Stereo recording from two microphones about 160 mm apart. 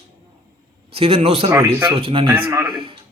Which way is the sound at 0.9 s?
35° right (ahead or behind).